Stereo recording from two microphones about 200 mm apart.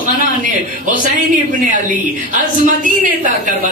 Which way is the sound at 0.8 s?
40° right (ahead or behind).